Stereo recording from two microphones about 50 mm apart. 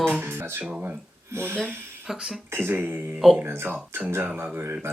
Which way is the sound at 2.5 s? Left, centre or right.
Right.